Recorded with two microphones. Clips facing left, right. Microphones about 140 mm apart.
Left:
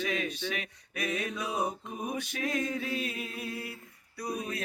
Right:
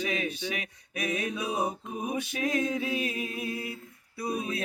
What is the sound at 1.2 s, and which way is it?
Music, 10° right (ahead or behind).